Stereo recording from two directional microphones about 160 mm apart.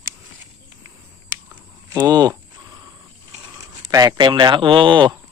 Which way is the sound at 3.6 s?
20° right (ahead or behind).